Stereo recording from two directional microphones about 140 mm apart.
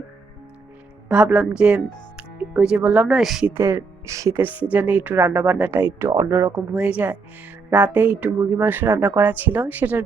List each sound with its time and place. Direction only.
1.0 s speech: 5° right (ahead or behind)
3.5 s speech: 20° right (ahead or behind)
6.7 s speech: 10° right (ahead or behind)